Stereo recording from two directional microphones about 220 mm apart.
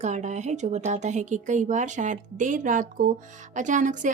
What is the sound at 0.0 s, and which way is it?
A woman's voice, 30° right (ahead or behind).